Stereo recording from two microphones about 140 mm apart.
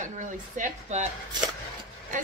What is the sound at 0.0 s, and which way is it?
A woman's voice, 65° right (ahead or behind).